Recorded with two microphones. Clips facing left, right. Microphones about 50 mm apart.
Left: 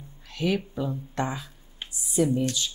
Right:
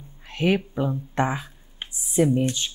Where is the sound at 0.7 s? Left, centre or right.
Right.